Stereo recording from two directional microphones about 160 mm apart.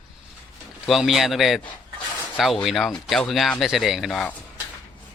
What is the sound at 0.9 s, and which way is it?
Speech, centre (ahead or behind).